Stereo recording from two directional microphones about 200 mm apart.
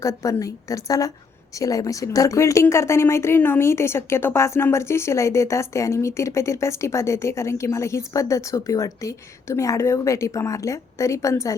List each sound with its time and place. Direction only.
0.0 s a woman's voice: 15° left (ahead or behind)